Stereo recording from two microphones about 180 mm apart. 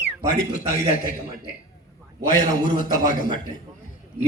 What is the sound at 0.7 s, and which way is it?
Speech, 50° left (ahead or behind).